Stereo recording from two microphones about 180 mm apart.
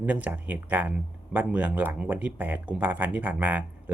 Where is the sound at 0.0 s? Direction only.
10° right (ahead or behind).